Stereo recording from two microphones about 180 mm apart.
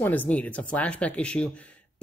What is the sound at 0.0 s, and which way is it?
Speech, 10° left (ahead or behind).